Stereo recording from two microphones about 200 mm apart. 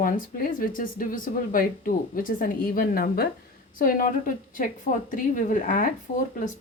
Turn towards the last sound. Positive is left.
turn(degrees=40)  # may be behind; listen again after turning